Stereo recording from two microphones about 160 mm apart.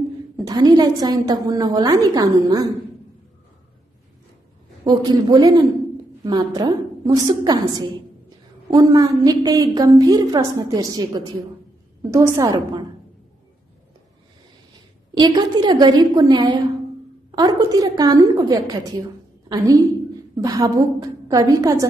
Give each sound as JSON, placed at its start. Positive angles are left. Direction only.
{"t": 0.5, "sound": "a woman's voice", "side_deg": -25}
{"t": 4.8, "sound": "a woman's voice", "side_deg": -25}
{"t": 15.1, "sound": "a woman's voice", "side_deg": -25}